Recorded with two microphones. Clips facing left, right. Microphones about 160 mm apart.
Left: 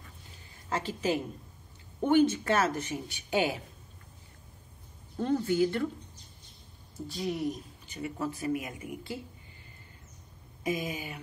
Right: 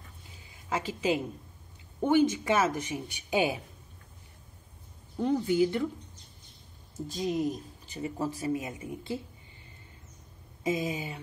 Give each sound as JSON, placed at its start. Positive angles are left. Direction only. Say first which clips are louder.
{"t": 0.7, "sound": "a woman's voice", "louder": "right 1 dB", "side_deg": -10}
{"t": 5.1, "sound": "speech", "louder": "right 1 dB", "side_deg": -15}
{"t": 7.8, "sound": "speech", "louder": "right 1 dB", "side_deg": -35}
{"t": 10.6, "sound": "speech", "louder": "right 2 dB", "side_deg": -25}